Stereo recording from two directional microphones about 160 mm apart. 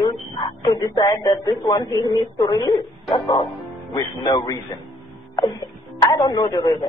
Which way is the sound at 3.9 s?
25° left (ahead or behind).